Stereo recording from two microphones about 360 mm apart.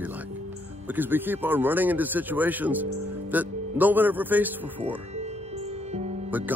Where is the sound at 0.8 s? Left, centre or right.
Centre.